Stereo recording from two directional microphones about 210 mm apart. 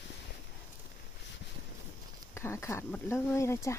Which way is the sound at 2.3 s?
10° left (ahead or behind).